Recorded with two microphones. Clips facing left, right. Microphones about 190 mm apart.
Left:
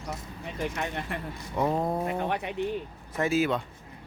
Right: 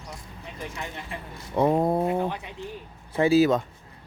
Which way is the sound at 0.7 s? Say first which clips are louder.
Left 3 dB; 60° left (ahead or behind).